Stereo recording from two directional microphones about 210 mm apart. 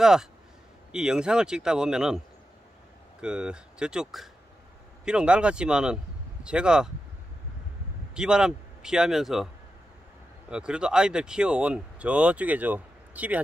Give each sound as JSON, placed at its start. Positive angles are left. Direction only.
{"t": 0.0, "sound": "speech", "side_deg": -5}
{"t": 3.2, "sound": "speech", "side_deg": -5}
{"t": 8.1, "sound": "a man's voice", "side_deg": -5}
{"t": 10.5, "sound": "speech", "side_deg": -5}